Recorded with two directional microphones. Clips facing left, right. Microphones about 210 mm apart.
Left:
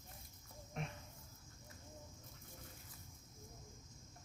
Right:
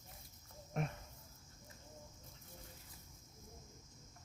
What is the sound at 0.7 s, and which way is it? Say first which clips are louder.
Cricket: right 6 dB; 50° right (ahead or behind).